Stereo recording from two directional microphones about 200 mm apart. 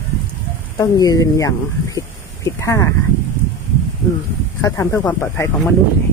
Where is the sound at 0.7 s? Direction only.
20° left (ahead or behind).